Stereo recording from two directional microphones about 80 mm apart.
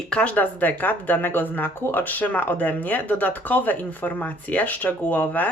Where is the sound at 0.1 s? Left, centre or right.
Centre.